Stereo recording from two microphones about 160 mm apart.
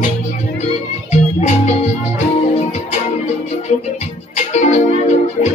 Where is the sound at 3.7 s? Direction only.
45° left (ahead or behind).